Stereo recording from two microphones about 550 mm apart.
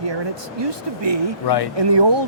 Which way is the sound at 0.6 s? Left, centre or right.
Right.